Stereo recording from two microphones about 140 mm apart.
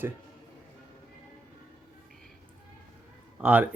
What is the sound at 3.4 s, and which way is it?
Speech, 10° right (ahead or behind).